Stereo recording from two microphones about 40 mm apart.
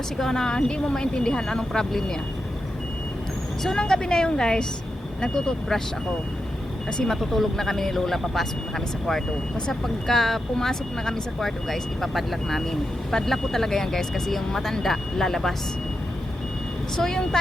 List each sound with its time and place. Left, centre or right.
0.2 s speech: centre
3.8 s speech: centre
6.9 s speech: centre
17.0 s speech: centre